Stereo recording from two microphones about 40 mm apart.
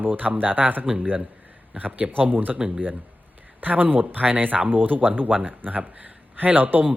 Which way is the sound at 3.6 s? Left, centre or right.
Right.